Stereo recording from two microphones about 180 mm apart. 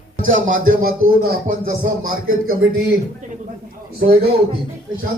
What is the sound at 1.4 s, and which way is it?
Speech, 50° right (ahead or behind).